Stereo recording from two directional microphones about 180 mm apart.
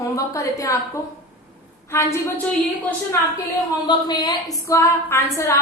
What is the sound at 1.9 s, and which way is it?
Speech, 15° left (ahead or behind).